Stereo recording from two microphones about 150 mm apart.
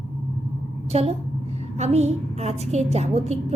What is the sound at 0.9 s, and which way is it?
A woman's voice, 40° right (ahead or behind).